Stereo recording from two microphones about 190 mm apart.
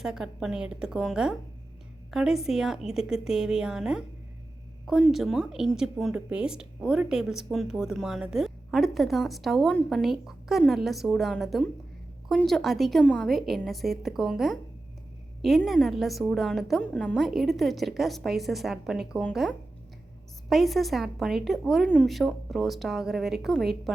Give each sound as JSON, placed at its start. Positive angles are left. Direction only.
{"t": 0.0, "sound": "a woman's voice", "side_deg": -5}